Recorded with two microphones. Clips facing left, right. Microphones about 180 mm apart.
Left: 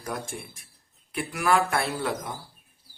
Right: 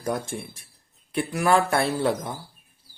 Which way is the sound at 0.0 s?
30° right (ahead or behind).